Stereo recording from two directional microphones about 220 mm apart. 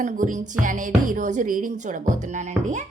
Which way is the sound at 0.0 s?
35° right (ahead or behind).